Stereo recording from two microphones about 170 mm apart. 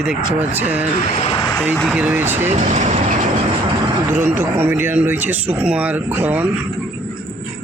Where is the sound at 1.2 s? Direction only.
35° left (ahead or behind).